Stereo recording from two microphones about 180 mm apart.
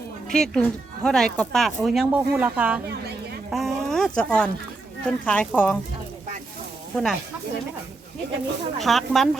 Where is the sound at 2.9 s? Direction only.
60° right (ahead or behind).